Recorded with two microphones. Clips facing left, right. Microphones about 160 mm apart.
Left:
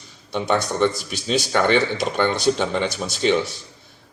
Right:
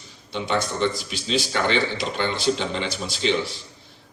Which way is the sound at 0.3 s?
50° left (ahead or behind).